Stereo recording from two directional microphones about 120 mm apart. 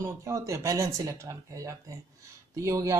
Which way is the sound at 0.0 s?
25° right (ahead or behind).